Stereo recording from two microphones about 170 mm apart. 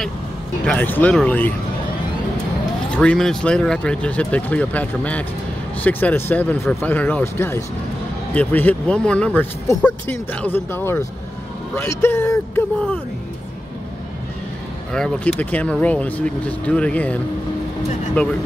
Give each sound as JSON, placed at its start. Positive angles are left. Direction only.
{"t": 0.7, "sound": "speech", "side_deg": 10}
{"t": 2.9, "sound": "speech", "side_deg": 5}
{"t": 14.9, "sound": "speech", "side_deg": 5}